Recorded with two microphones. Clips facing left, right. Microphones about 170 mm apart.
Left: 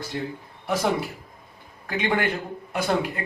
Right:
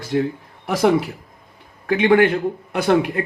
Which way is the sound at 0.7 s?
75° right (ahead or behind).